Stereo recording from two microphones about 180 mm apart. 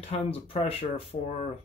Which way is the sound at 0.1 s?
30° left (ahead or behind).